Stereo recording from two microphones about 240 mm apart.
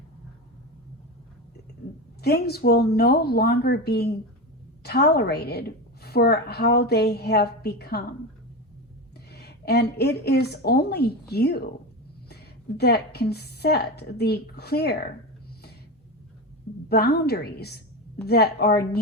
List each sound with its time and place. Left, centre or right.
2.2 s a woman's voice: left
9.3 s a woman's voice: left
16.9 s a woman's voice: left